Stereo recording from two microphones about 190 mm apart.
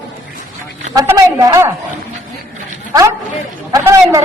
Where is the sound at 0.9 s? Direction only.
20° right (ahead or behind).